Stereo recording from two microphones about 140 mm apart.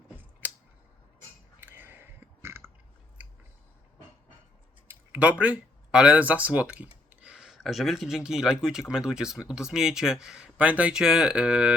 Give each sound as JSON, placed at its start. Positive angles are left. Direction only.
{"t": 0.4, "sound": "scissors", "side_deg": -10}
{"t": 1.6, "sound": "a sound", "side_deg": -15}
{"t": 4.9, "sound": "speech", "side_deg": -10}